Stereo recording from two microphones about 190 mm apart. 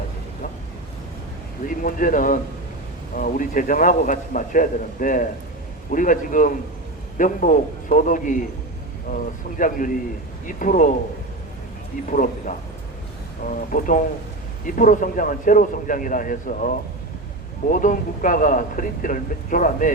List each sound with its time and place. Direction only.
1.6 s speech: 45° left (ahead or behind)
12.0 s speech: 45° left (ahead or behind)